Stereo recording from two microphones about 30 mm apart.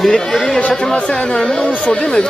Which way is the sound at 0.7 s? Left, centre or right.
Left.